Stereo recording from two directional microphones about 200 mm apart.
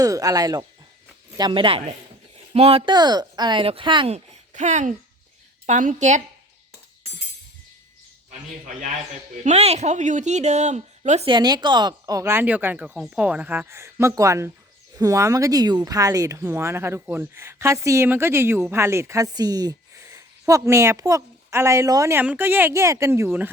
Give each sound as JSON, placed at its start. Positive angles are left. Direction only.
{"t": 0.0, "sound": "speech", "side_deg": -15}
{"t": 9.4, "sound": "speech", "side_deg": -35}
{"t": 11.3, "sound": "speech", "side_deg": -20}